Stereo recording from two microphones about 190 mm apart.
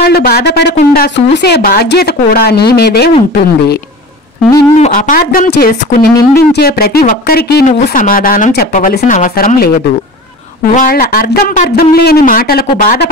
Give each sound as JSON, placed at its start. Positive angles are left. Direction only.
{"t": 0.0, "sound": "speech", "side_deg": 55}
{"t": 3.1, "sound": "speech", "side_deg": 35}
{"t": 4.7, "sound": "speech", "side_deg": 40}
{"t": 10.7, "sound": "speech", "side_deg": 50}